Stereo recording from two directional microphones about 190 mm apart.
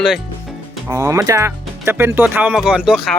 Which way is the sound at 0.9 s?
15° right (ahead or behind).